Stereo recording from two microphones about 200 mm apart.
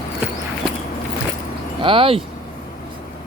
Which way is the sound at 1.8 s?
25° right (ahead or behind).